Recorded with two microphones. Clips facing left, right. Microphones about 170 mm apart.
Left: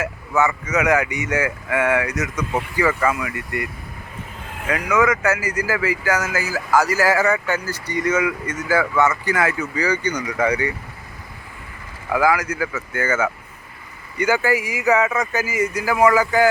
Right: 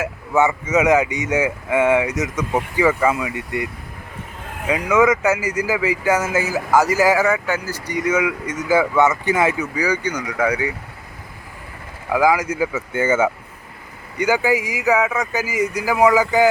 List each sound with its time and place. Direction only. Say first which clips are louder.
0.0 s speech: right 2 dB; 25° right (ahead or behind); by 10.8 s 5° right (ahead or behind)
12.1 s speech: right 2 dB; 20° right (ahead or behind)
14.2 s speech: right 1 dB; 15° right (ahead or behind)